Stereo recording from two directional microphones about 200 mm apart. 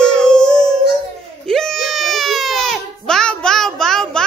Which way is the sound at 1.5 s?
Centre (ahead or behind).